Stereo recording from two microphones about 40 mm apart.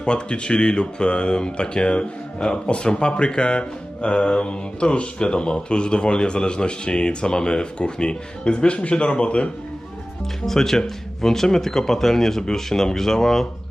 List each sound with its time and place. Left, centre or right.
0.0 s speech: left
10.4 s speech: centre